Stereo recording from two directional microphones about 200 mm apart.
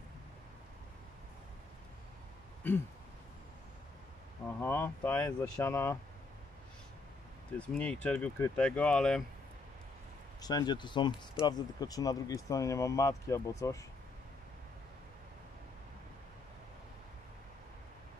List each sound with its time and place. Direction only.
2.6 s speech: 10° left (ahead or behind)
4.6 s speech: 10° left (ahead or behind)
7.5 s speech: 5° left (ahead or behind)
10.4 s speech: 20° left (ahead or behind)